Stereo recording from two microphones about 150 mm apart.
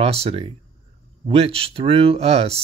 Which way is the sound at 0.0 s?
40° right (ahead or behind).